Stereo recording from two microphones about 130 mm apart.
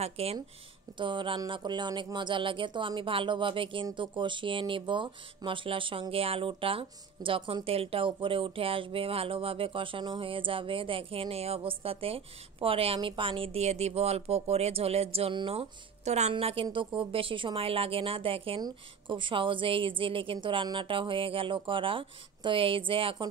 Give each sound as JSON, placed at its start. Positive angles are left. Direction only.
{"t": 0.0, "sound": "speech", "side_deg": -50}
{"t": 0.9, "sound": "a woman's voice", "side_deg": -40}
{"t": 16.0, "sound": "a woman's voice", "side_deg": -60}